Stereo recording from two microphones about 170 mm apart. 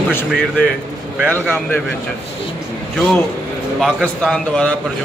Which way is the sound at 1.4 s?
10° left (ahead or behind).